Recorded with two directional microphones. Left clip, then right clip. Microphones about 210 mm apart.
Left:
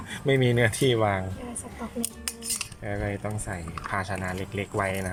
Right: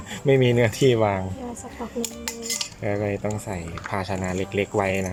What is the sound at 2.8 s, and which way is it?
Speech, 10° right (ahead or behind).